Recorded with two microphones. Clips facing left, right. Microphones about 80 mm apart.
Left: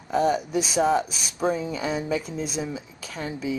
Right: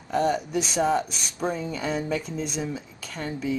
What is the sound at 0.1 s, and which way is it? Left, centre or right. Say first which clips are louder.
Speech: left 2 dB; centre.